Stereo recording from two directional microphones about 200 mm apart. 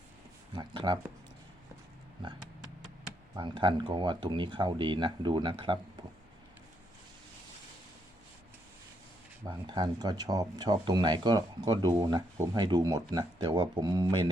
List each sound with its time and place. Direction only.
0.5 s speech: 25° right (ahead or behind)
3.3 s speech: 25° right (ahead or behind)
9.5 s speech: 20° right (ahead or behind)